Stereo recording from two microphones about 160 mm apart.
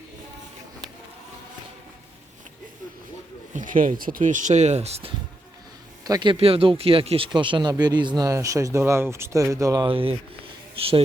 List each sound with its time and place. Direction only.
3.5 s speech: 55° right (ahead or behind)
6.1 s speech: 25° right (ahead or behind)
6.3 s speech: 35° right (ahead or behind); by 9.9 s 20° right (ahead or behind)
9.9 s speech: 35° right (ahead or behind)